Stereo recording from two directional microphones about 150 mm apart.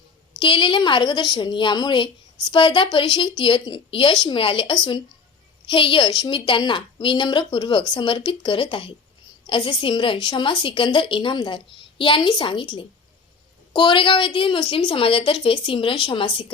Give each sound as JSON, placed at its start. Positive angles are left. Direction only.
{"t": 0.3, "sound": "a woman's voice", "side_deg": 35}